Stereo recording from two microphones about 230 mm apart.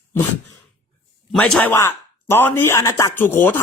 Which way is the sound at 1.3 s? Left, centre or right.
Centre.